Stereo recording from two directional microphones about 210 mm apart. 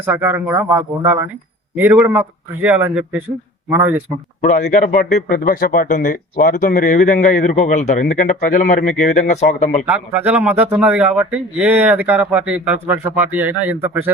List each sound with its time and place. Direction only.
0.0 s a man's voice: 10° right (ahead or behind)
4.4 s speech: 35° left (ahead or behind)
9.8 s a man's voice: 5° right (ahead or behind)